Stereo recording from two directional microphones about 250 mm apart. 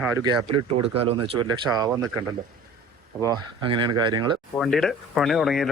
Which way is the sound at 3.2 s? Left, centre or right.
Centre.